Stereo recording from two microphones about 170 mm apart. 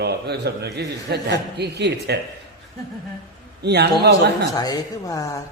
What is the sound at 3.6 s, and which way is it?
Speech, 75° right (ahead or behind).